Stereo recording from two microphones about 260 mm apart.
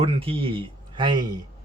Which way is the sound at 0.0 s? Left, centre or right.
Right.